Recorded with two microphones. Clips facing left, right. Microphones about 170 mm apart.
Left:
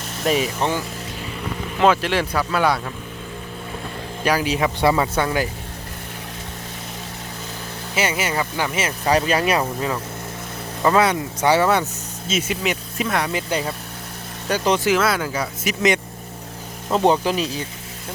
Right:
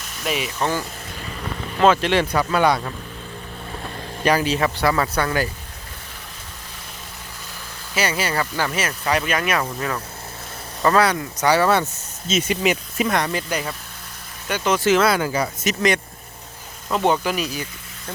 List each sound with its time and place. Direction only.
0.3 s speech: 40° left (ahead or behind)
1.8 s speech: 5° left (ahead or behind)
4.2 s a man's voice: 5° left (ahead or behind)
7.9 s speech: 20° left (ahead or behind)
9.0 s speech: 30° left (ahead or behind)
12.3 s speech: 5° left (ahead or behind)
13.3 s speech: 25° left (ahead or behind)
14.8 s speech: 5° left (ahead or behind)
16.9 s speech: 30° left (ahead or behind)